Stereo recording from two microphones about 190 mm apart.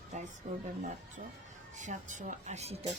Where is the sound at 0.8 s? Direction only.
40° right (ahead or behind).